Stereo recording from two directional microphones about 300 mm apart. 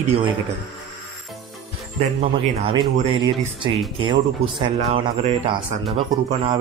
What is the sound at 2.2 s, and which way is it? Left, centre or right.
Speech, centre.